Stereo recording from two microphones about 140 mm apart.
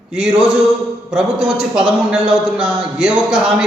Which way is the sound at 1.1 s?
5° right (ahead or behind).